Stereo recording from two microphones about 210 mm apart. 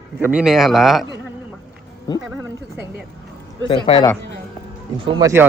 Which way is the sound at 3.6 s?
20° left (ahead or behind).